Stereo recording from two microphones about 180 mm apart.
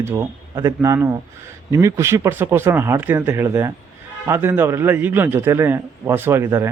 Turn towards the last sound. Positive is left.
turn(degrees=-15)  # may be behind; listen again after turning